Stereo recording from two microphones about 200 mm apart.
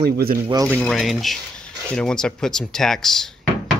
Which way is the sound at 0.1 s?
50° right (ahead or behind).